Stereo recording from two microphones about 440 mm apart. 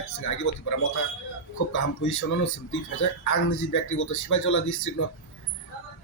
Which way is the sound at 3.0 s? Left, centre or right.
Left.